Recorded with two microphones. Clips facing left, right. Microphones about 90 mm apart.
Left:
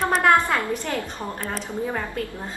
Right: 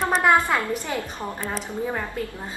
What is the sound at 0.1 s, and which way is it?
Speech, 10° right (ahead or behind).